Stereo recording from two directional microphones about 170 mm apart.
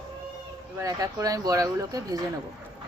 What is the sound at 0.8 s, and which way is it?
Speech, 20° right (ahead or behind).